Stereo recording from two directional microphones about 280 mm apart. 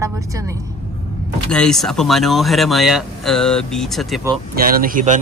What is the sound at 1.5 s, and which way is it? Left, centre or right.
Speech, centre.